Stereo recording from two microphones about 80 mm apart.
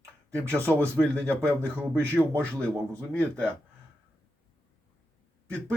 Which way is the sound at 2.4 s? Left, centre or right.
Centre.